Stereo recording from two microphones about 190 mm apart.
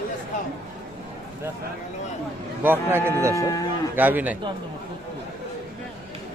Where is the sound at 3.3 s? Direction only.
20° left (ahead or behind).